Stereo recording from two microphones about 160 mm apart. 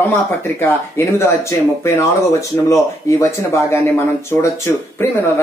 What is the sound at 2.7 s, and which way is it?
Speech, 20° left (ahead or behind).